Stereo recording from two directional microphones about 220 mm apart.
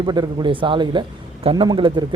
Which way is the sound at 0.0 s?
20° right (ahead or behind).